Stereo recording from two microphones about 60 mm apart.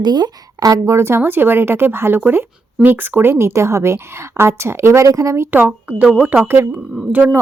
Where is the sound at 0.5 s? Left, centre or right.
Right.